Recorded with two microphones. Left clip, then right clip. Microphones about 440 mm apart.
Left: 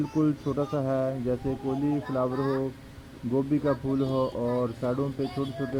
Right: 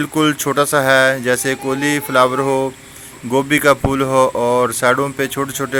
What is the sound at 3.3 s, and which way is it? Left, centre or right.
Speech, right.